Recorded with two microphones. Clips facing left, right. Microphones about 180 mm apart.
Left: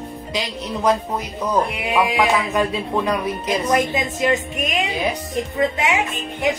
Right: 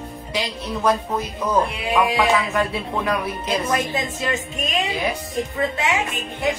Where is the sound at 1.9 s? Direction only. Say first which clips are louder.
Even; 15° left (ahead or behind).